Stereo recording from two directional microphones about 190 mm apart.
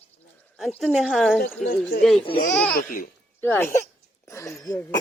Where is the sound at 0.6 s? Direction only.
Centre (ahead or behind).